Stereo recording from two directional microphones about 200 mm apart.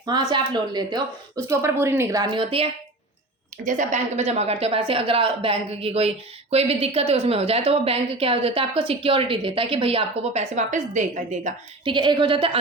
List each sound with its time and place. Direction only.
0.0 s speech: 20° right (ahead or behind)
3.6 s speech: 40° right (ahead or behind)
11.9 s speech: 25° right (ahead or behind)